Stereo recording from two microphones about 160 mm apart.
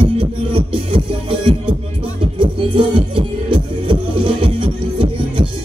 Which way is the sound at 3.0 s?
30° right (ahead or behind).